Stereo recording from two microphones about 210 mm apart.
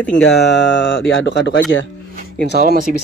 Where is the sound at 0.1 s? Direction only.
55° left (ahead or behind).